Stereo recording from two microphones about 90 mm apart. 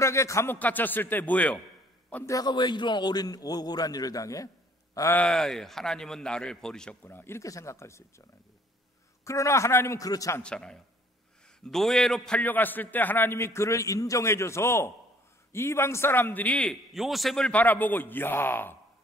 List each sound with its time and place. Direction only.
0.0 s a man's voice: 35° left (ahead or behind)
0.6 s a man's voice: 20° left (ahead or behind)
2.4 s a man's voice: 55° left (ahead or behind); by 4.5 s 40° left (ahead or behind)
5.1 s a man's voice: 10° left (ahead or behind)
7.0 s a man's voice: 25° left (ahead or behind)
9.2 s a man's voice: 35° left (ahead or behind)
10.4 s a man's voice: 10° left (ahead or behind)
12.4 s a man's voice: 20° left (ahead or behind)
16.9 s a man's voice: centre (ahead or behind)
17.5 s a man's voice: 20° left (ahead or behind)